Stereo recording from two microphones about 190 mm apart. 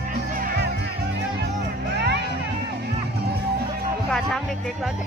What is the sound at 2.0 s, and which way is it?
Music, 60° right (ahead or behind).